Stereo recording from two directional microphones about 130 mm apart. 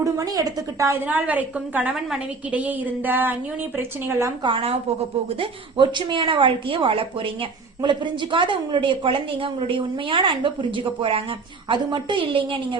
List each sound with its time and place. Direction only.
0.0 s a woman's voice: 25° right (ahead or behind)
1.0 s a woman's voice: 10° right (ahead or behind)
4.4 s a woman's voice: 45° right (ahead or behind)